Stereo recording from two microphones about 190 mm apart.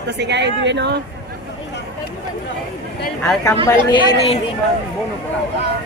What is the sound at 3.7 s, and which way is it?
Speech, 20° left (ahead or behind).